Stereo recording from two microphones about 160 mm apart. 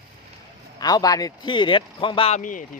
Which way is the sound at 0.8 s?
25° left (ahead or behind).